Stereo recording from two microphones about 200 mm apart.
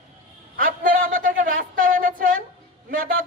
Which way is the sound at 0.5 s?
45° right (ahead or behind).